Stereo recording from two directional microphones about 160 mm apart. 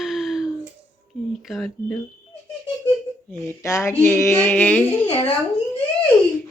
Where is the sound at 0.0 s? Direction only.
Centre (ahead or behind).